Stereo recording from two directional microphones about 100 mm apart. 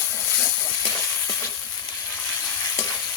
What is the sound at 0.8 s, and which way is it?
Sizzle, 30° left (ahead or behind).